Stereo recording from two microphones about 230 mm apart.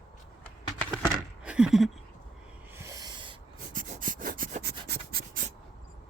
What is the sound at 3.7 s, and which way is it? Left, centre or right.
Rub, right.